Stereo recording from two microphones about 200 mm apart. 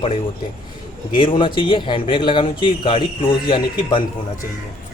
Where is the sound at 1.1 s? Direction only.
25° left (ahead or behind).